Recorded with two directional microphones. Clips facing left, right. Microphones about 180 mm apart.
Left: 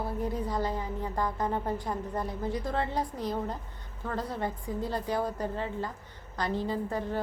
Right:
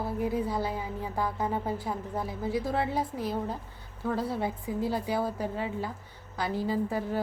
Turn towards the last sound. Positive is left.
turn(degrees=-5)  # may be behind; listen again after turning